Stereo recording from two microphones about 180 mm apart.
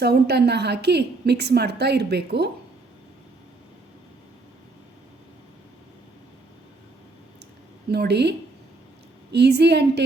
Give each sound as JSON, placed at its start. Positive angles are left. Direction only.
{"t": 0.0, "sound": "a woman's voice", "side_deg": -65}
{"t": 7.9, "sound": "a woman's voice", "side_deg": -65}